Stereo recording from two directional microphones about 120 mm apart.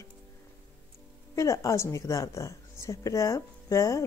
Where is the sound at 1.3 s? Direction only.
25° left (ahead or behind).